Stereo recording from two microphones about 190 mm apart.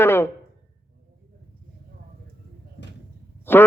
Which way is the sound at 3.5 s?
10° left (ahead or behind).